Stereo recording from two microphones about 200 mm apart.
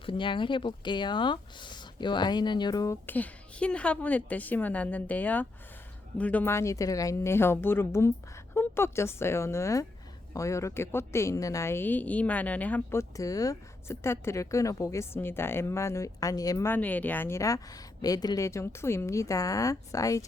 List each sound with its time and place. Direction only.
0.0 s a woman's voice: 25° left (ahead or behind)